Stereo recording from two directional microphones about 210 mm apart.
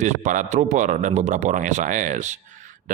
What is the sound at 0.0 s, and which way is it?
A man's voice, 35° right (ahead or behind).